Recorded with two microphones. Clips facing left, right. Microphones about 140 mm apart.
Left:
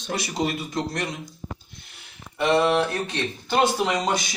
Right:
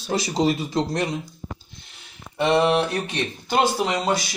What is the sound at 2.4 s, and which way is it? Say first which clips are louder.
Speech: right 1 dB; 25° right (ahead or behind).